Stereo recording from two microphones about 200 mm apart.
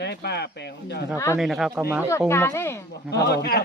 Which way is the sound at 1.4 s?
Centre (ahead or behind).